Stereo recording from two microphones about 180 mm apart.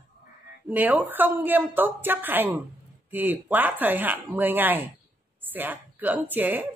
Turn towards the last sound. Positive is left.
turn(degrees=-10)  # may be behind; listen again after turning